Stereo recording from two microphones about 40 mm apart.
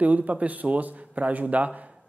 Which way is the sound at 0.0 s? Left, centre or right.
Right.